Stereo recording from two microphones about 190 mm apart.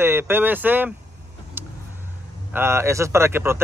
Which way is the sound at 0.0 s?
10° right (ahead or behind).